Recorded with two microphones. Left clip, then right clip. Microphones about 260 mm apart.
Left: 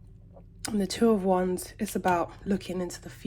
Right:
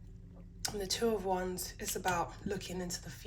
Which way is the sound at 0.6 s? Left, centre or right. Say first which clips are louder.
Left 7 dB; left.